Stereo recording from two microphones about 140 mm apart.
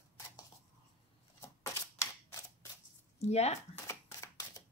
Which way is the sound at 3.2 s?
50° left (ahead or behind).